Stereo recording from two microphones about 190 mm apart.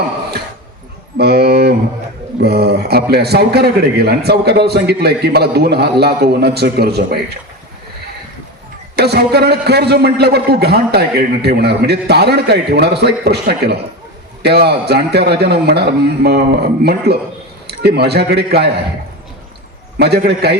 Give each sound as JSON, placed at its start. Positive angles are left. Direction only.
{"t": 1.2, "sound": "a sound", "side_deg": -60}
{"t": 2.4, "sound": "a man's voice", "side_deg": -60}
{"t": 9.0, "sound": "a man's voice", "side_deg": -60}
{"t": 20.0, "sound": "a man's voice", "side_deg": -60}